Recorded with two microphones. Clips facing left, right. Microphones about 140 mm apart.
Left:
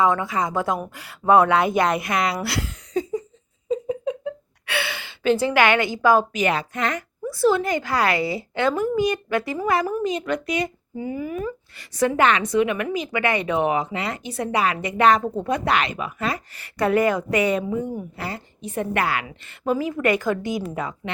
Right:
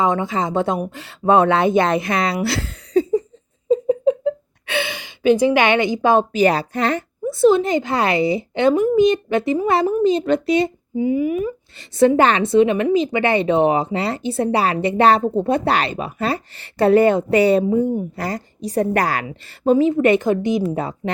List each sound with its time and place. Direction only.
0.0 s speech: 20° right (ahead or behind)
10.9 s speech: 15° right (ahead or behind)
11.9 s a woman's voice: 30° right (ahead or behind)
19.7 s speech: 25° right (ahead or behind)
20.7 s a woman's voice: 30° right (ahead or behind)